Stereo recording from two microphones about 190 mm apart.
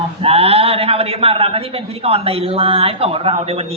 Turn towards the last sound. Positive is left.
turn(degrees=-30)  # may be behind; listen again after turning